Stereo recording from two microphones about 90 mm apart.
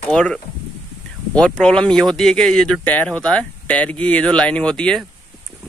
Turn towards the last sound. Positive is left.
turn(degrees=10)  # may be behind; listen again after turning